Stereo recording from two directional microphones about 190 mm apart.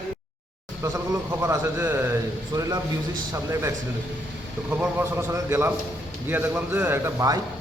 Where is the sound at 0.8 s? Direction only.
15° right (ahead or behind).